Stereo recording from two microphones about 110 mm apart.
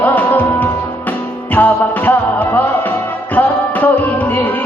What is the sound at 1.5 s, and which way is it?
Music, 15° left (ahead or behind).